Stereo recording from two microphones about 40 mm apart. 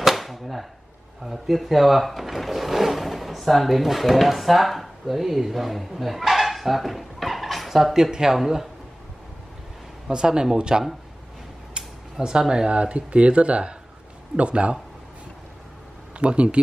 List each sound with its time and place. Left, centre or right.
0.0 s a sound: centre
1.2 s speech: centre
10.0 s speech: centre
16.2 s speech: right